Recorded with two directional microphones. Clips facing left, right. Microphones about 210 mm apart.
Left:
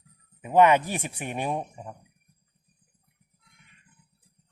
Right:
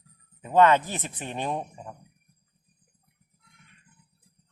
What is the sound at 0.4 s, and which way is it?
Speech, 15° left (ahead or behind).